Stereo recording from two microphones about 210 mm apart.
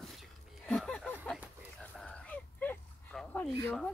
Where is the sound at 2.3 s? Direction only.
5° left (ahead or behind).